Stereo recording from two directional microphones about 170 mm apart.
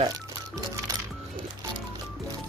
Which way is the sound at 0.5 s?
20° right (ahead or behind).